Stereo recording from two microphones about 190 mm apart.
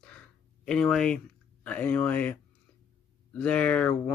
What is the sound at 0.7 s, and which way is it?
Speech, 5° left (ahead or behind).